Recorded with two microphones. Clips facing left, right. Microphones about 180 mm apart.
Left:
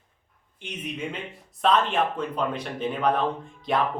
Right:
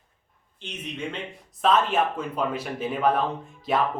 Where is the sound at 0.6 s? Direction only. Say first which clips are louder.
Left 1 dB; 10° left (ahead or behind).